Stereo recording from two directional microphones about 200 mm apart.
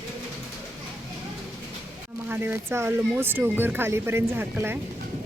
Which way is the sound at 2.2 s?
10° right (ahead or behind).